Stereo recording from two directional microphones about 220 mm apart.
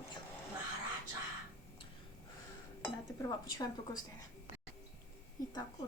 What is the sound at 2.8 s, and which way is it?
Speech, 20° left (ahead or behind).